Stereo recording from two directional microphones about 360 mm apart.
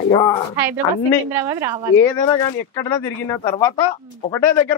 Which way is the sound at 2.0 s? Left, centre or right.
Centre.